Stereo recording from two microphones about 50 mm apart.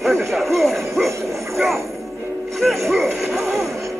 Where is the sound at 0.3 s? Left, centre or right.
Centre.